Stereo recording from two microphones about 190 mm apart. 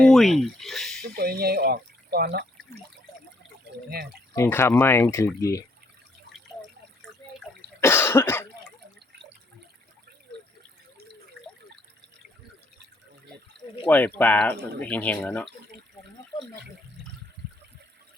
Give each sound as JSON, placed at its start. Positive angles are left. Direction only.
{"t": 0.0, "sound": "speech", "side_deg": 0}
{"t": 1.1, "sound": "speech", "side_deg": -55}
{"t": 3.7, "sound": "speech", "side_deg": -65}
{"t": 4.4, "sound": "speech", "side_deg": 15}
{"t": 7.8, "sound": "cough", "side_deg": 10}
{"t": 13.8, "sound": "speech", "side_deg": 10}
{"t": 17.4, "sound": "water", "side_deg": -65}